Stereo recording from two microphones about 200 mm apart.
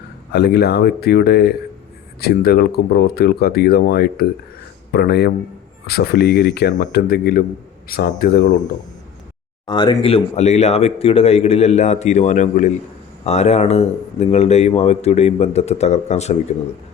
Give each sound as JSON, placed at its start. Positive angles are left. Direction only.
{"t": 0.3, "sound": "speech", "side_deg": 55}
{"t": 9.6, "sound": "speech", "side_deg": 25}